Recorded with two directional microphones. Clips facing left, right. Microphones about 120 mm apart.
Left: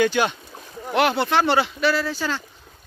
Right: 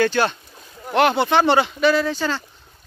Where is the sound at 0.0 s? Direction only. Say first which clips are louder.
Right 1 dB; 10° left (ahead or behind).